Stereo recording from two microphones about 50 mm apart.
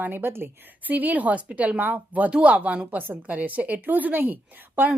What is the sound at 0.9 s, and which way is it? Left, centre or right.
A woman's voice, right.